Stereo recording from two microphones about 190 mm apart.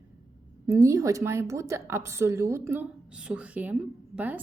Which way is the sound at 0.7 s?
15° right (ahead or behind).